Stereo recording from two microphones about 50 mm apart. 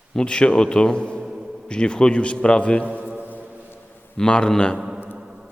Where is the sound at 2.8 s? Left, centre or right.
Right.